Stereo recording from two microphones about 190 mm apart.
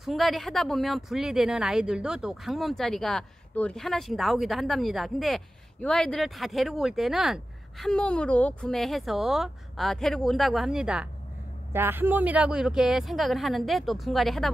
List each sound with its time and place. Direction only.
0.0 s a woman's voice: centre (ahead or behind)